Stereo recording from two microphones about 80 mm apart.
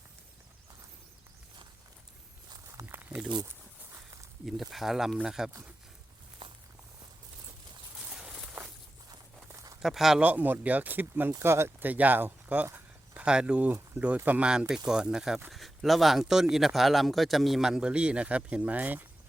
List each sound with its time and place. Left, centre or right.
2.9 s snake: right
4.4 s speech: centre
8.1 s walk: centre
9.8 s speech: centre
10.2 s speech: right
11.3 s speech: right
11.8 s speech: right
12.7 s a sound: centre
14.3 s speech: centre